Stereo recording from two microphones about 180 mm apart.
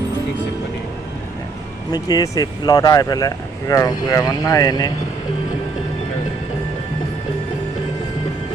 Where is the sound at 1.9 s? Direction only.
20° left (ahead or behind).